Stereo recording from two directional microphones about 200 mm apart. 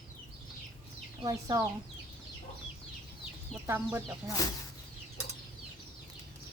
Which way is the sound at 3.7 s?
10° right (ahead or behind).